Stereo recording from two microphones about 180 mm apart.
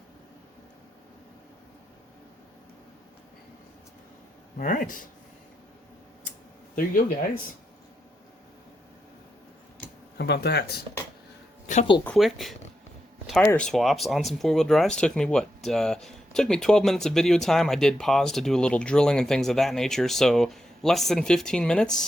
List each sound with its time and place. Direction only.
4.5 s speech: 45° left (ahead or behind)
10.2 s speech: 65° left (ahead or behind)
11.6 s speech: 40° left (ahead or behind)
12.0 s speech: centre (ahead or behind)